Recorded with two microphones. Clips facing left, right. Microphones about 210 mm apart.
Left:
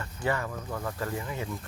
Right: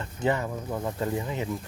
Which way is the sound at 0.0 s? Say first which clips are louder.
Right 4 dB; 20° right (ahead or behind).